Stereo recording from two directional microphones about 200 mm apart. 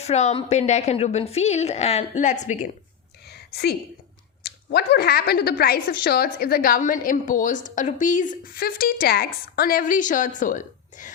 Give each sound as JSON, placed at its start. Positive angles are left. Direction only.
{"t": 0.0, "sound": "a woman's voice", "side_deg": 35}
{"t": 3.2, "sound": "a sound", "side_deg": 55}
{"t": 4.4, "sound": "speech", "side_deg": 55}